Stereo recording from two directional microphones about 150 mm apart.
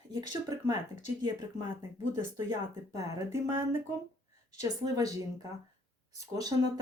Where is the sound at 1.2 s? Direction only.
25° right (ahead or behind).